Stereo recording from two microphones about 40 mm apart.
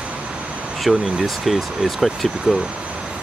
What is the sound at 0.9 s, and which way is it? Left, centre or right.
Speech, centre.